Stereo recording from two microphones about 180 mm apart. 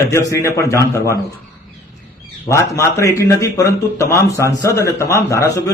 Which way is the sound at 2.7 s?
15° left (ahead or behind).